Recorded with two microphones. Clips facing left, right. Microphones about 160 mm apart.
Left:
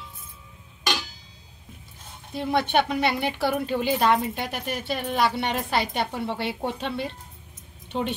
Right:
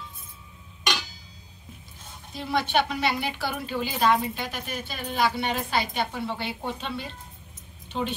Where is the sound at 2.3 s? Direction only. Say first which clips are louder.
Left 3 dB; 60° left (ahead or behind).